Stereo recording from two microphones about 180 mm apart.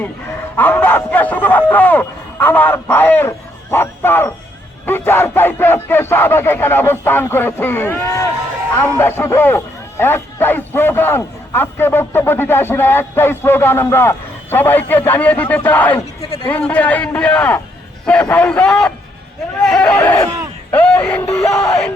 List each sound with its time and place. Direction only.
0.5 s a man's voice: 10° left (ahead or behind)
16.2 s speech: 30° left (ahead or behind)
16.5 s a man's voice: 10° left (ahead or behind)
20.7 s music: 10° left (ahead or behind)
21.6 s speech: 5° left (ahead or behind)